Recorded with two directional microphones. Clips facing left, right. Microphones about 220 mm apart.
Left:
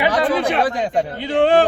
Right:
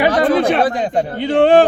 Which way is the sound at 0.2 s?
45° right (ahead or behind).